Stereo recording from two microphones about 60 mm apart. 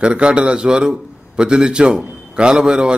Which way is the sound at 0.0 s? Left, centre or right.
Centre.